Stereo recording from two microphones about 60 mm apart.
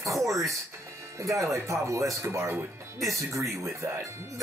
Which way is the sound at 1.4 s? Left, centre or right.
Right.